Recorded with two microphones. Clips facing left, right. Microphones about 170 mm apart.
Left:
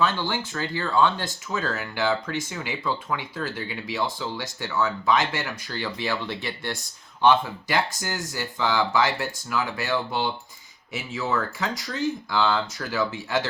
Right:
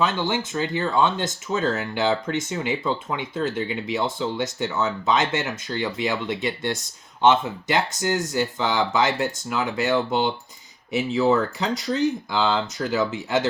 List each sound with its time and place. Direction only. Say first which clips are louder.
0.0 s speech: right 2 dB; 20° right (ahead or behind)